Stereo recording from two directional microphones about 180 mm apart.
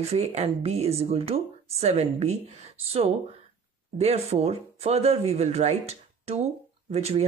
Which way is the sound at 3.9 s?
35° right (ahead or behind).